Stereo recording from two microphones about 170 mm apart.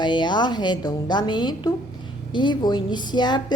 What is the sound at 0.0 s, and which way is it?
A woman's voice, 25° left (ahead or behind).